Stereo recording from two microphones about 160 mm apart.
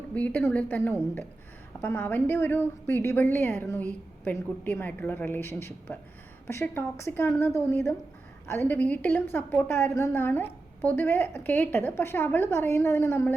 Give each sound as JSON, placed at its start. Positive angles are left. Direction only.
{"t": 0.1, "sound": "a woman's voice", "side_deg": 10}